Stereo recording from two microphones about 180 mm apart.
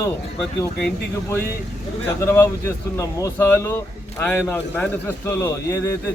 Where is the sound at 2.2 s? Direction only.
15° left (ahead or behind).